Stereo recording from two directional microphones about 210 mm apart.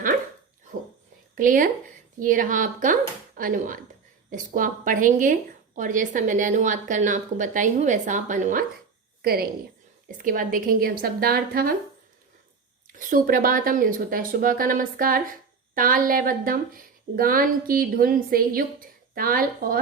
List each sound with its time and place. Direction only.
1.4 s speech: 40° right (ahead or behind)
9.2 s a woman's voice: 45° right (ahead or behind)
12.9 s a woman's voice: 40° right (ahead or behind)